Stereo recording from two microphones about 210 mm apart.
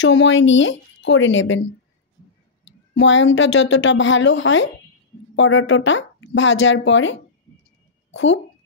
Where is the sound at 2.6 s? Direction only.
60° left (ahead or behind).